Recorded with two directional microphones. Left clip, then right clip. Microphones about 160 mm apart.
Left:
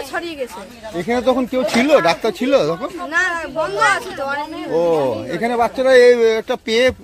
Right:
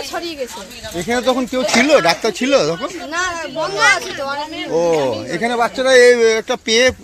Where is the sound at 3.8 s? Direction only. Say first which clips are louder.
Right 3 dB; 40° left (ahead or behind).